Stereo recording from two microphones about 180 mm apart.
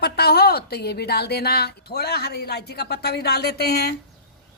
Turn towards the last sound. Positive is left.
turn(degrees=65)  # may be behind; listen again after turning